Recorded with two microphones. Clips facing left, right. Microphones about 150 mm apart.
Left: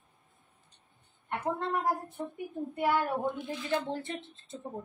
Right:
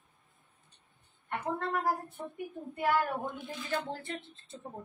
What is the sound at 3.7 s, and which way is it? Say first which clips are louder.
Speech: left 3 dB; 20° left (ahead or behind).